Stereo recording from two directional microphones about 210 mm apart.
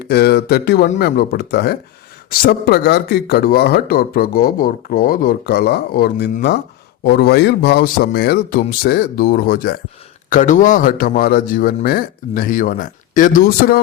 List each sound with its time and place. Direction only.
0.1 s a man's voice: 50° left (ahead or behind)